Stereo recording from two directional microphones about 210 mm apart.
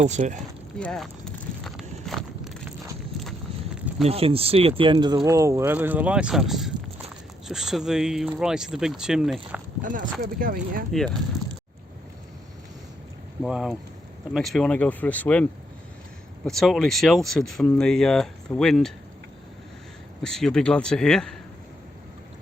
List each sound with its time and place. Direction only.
0.0 s speech: 35° right (ahead or behind)
0.8 s speech: 5° left (ahead or behind)
1.6 s walk: centre (ahead or behind)
4.0 s speech: 30° right (ahead or behind); by 9.4 s centre (ahead or behind)
9.8 s speech: 40° right (ahead or behind)
13.4 s speech: centre (ahead or behind)
20.2 s speech: 5° left (ahead or behind)